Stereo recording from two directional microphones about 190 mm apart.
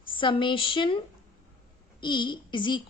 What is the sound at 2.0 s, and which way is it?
Speech, 25° left (ahead or behind).